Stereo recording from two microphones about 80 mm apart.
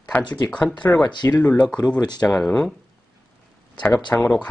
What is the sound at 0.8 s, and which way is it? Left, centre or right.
Speech, left.